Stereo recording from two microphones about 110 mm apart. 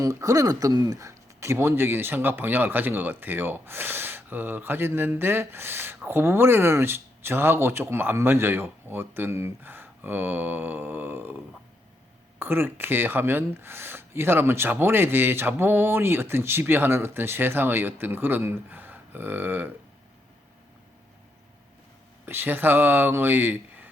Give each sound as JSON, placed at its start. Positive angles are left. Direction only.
{"t": 0.0, "sound": "speech", "side_deg": -30}
{"t": 22.3, "sound": "speech", "side_deg": -20}